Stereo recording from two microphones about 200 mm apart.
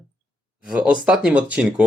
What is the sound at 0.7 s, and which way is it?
Speech, 5° right (ahead or behind).